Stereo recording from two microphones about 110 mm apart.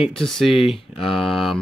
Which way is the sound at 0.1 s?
5° left (ahead or behind).